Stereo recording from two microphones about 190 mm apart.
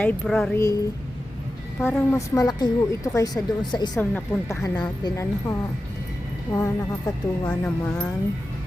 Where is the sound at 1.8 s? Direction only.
10° left (ahead or behind).